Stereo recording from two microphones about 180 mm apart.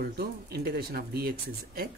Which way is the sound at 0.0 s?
60° right (ahead or behind).